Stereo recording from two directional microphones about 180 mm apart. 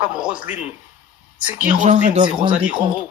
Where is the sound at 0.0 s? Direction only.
5° right (ahead or behind).